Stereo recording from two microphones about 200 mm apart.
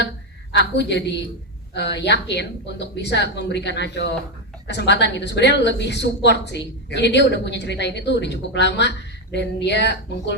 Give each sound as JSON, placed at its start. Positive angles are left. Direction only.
{"t": 0.8, "sound": "a woman's voice", "side_deg": 60}